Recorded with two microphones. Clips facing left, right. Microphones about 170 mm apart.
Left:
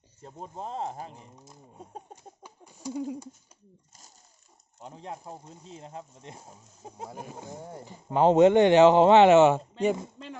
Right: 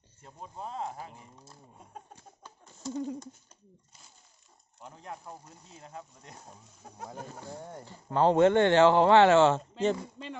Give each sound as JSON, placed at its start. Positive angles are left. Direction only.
{"t": 0.2, "sound": "speech", "side_deg": 35}
{"t": 2.1, "sound": "a sound", "side_deg": 10}
{"t": 4.8, "sound": "speech", "side_deg": 30}